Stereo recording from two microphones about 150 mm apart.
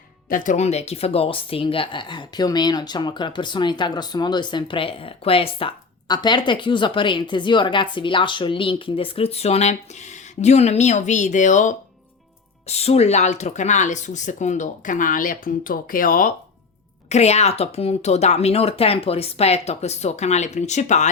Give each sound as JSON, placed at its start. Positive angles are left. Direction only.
{"t": 0.3, "sound": "speech", "side_deg": 60}
{"t": 12.6, "sound": "speech", "side_deg": 45}
{"t": 17.1, "sound": "speech", "side_deg": 45}